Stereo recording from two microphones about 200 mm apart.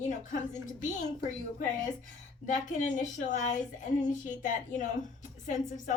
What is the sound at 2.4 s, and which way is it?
A woman's voice, 40° left (ahead or behind).